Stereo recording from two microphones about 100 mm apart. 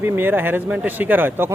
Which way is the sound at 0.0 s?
20° right (ahead or behind).